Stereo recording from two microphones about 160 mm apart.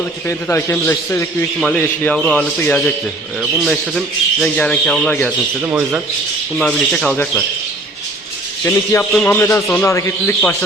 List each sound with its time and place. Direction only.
0.3 s a man's voice: 15° left (ahead or behind)
6.6 s a man's voice: 5° left (ahead or behind)
8.6 s a man's voice: 15° left (ahead or behind)